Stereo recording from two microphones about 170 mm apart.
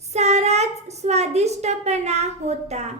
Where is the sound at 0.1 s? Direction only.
40° right (ahead or behind).